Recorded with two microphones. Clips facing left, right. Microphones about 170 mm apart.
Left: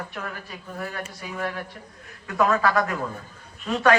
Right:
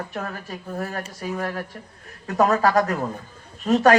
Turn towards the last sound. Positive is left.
turn(degrees=-40)  # may be behind; listen again after turning